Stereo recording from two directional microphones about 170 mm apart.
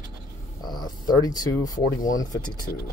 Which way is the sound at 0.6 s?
25° left (ahead or behind).